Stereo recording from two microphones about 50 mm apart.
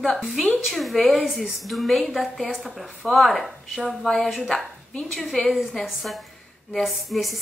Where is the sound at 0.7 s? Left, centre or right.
Centre.